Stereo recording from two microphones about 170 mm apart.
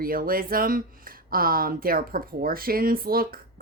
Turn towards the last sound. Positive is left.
turn(degrees=-60)  # may be behind; listen again after turning